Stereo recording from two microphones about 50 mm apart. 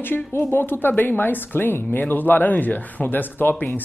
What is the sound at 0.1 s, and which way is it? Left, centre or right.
Speech, left.